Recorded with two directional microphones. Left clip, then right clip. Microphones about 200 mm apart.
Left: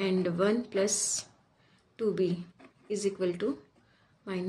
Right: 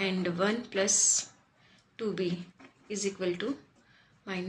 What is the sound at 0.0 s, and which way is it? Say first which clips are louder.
Speech: left 2 dB; 50° left (ahead or behind).